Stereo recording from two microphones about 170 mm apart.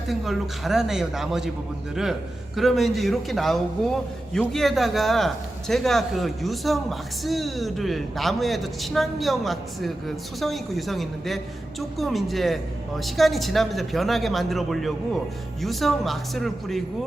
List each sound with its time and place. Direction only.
0.1 s a man's voice: centre (ahead or behind)
2.6 s a man's voice: centre (ahead or behind)